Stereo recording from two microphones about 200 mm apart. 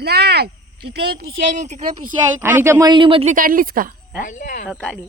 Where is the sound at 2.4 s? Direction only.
10° right (ahead or behind); by 3.4 s 30° right (ahead or behind).